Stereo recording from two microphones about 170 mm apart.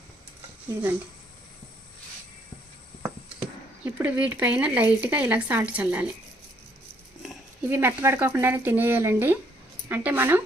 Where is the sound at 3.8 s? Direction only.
10° right (ahead or behind).